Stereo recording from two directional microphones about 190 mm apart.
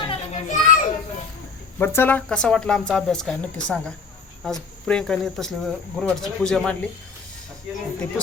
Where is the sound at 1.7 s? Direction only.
10° left (ahead or behind).